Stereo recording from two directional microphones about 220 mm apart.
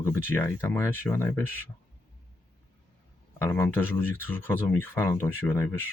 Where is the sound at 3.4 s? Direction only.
10° left (ahead or behind).